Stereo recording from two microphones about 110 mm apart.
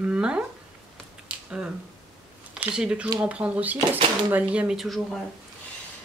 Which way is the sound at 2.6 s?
10° right (ahead or behind).